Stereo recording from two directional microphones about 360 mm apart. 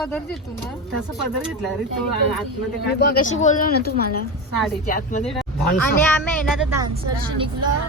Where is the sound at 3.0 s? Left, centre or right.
Left.